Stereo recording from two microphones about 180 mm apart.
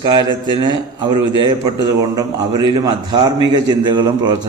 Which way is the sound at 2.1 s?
25° right (ahead or behind).